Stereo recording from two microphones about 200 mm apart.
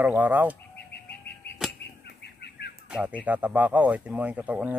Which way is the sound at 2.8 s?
5° right (ahead or behind).